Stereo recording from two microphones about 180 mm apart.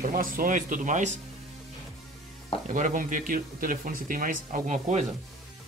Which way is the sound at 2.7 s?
45° right (ahead or behind).